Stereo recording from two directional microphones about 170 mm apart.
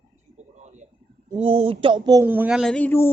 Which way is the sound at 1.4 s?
35° right (ahead or behind).